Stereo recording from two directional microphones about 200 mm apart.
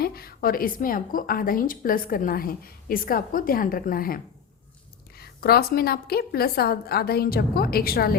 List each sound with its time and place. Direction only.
0.0 s a woman's voice: 50° left (ahead or behind)